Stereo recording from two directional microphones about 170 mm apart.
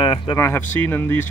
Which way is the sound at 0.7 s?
10° left (ahead or behind).